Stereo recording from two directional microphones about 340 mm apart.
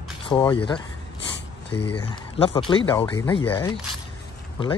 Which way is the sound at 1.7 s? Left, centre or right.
Left.